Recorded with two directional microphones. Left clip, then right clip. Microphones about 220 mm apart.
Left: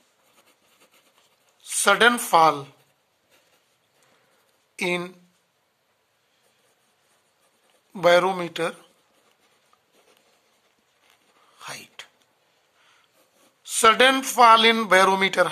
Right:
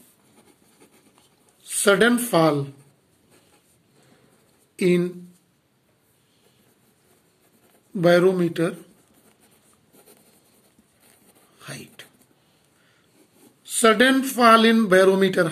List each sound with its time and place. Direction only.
1.6 s speech: 40° left (ahead or behind)
4.7 s speech: 40° left (ahead or behind)
7.9 s speech: 40° left (ahead or behind)
11.5 s a sound: 35° left (ahead or behind)
13.7 s speech: 40° left (ahead or behind)